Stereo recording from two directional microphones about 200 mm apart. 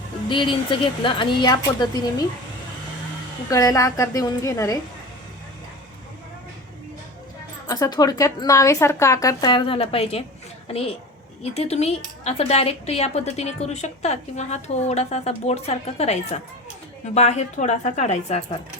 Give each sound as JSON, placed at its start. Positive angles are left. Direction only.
{"t": 0.3, "sound": "speech", "side_deg": 25}
{"t": 3.5, "sound": "a woman's voice", "side_deg": 15}
{"t": 7.7, "sound": "a woman's voice", "side_deg": 20}